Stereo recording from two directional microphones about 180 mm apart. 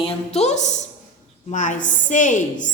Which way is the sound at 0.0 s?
35° left (ahead or behind).